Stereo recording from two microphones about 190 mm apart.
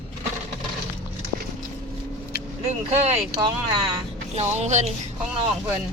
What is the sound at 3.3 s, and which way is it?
Speech, 25° right (ahead or behind).